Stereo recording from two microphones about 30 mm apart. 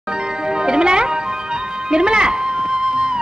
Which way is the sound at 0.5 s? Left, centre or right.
Right.